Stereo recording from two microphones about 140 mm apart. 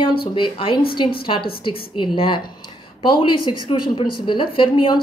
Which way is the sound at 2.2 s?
35° left (ahead or behind).